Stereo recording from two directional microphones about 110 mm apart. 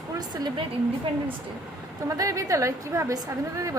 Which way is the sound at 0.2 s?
40° right (ahead or behind).